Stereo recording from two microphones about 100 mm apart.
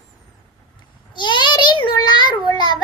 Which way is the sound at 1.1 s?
50° left (ahead or behind).